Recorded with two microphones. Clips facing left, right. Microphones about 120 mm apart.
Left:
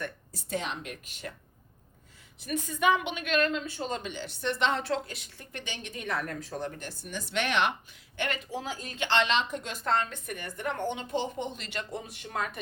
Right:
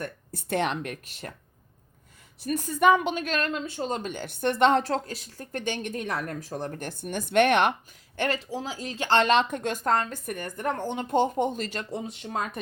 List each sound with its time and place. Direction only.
0.0 s a woman's voice: 55° right (ahead or behind)
2.4 s speech: 45° right (ahead or behind)
4.1 s a woman's voice: 50° right (ahead or behind); by 12.5 s 30° right (ahead or behind)